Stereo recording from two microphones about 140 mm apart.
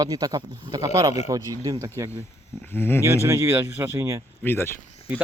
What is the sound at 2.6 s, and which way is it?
Speech, 15° left (ahead or behind).